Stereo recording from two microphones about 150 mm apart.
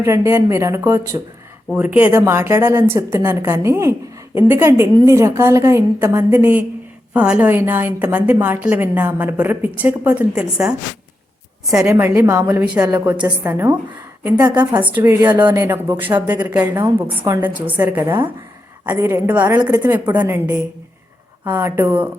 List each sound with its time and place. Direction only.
0.0 s a woman's voice: 15° right (ahead or behind)
11.9 s a woman's voice: 20° right (ahead or behind)
14.8 s a woman's voice: 10° right (ahead or behind)